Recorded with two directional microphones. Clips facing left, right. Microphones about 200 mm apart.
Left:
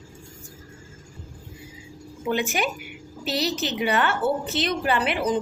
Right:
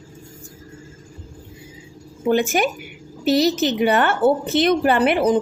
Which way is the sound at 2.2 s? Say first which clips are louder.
Right 7 dB; 45° right (ahead or behind).